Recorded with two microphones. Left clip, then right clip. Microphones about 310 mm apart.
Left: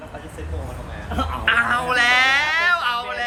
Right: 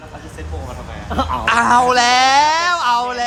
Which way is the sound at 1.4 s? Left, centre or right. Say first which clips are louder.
Right 6 dB; centre.